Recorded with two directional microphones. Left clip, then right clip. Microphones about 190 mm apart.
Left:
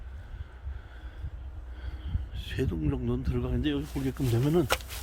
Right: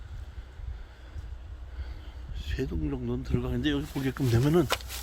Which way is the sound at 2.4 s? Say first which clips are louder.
Left 1 dB; 20° left (ahead or behind).